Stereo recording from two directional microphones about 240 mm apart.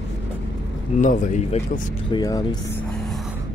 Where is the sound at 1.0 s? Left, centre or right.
Left.